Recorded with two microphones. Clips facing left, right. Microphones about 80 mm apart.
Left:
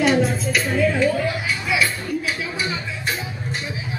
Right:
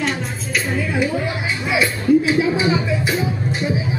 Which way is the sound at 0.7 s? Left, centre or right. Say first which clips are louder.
Left 3 dB; centre.